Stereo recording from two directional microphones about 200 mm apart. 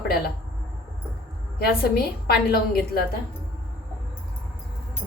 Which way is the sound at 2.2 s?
50° left (ahead or behind).